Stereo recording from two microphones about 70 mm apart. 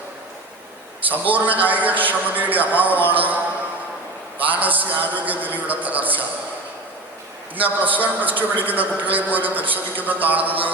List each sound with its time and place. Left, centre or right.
1.3 s a man's voice: right
7.5 s a man's voice: right